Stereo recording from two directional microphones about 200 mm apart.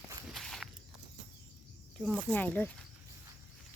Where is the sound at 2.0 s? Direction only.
Centre (ahead or behind).